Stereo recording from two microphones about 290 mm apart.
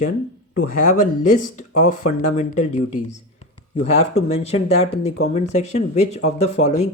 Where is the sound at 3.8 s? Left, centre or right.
Left.